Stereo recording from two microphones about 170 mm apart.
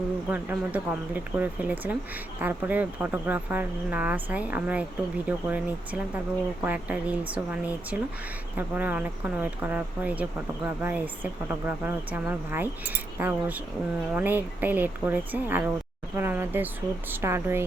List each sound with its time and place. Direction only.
0.3 s speech: 10° right (ahead or behind)